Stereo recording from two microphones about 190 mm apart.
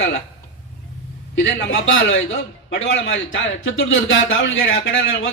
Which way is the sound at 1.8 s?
90° left.